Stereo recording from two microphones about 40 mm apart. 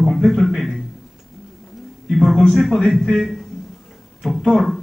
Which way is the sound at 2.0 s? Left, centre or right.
Centre.